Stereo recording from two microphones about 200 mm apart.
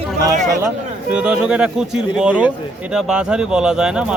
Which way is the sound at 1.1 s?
5° right (ahead or behind).